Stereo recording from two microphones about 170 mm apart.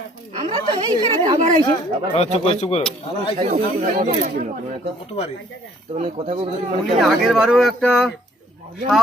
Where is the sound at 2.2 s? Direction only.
35° left (ahead or behind).